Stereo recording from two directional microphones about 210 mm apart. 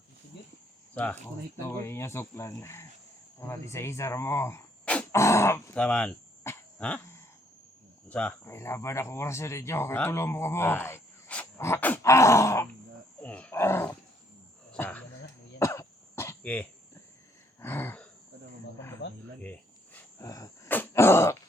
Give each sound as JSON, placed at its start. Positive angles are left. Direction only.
{"t": 1.5, "sound": "speech", "side_deg": 10}
{"t": 13.2, "sound": "wild animals", "side_deg": 5}
{"t": 14.7, "sound": "dog", "side_deg": 5}
{"t": 15.5, "sound": "cough", "side_deg": 15}
{"t": 17.6, "sound": "throat clearing", "side_deg": 10}
{"t": 19.0, "sound": "a sound", "side_deg": 55}
{"t": 19.4, "sound": "a sound", "side_deg": 5}